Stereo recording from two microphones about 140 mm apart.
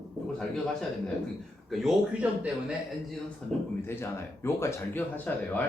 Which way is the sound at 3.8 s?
15° left (ahead or behind).